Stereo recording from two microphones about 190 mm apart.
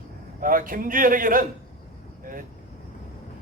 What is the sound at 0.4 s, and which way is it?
Speech, 45° right (ahead or behind).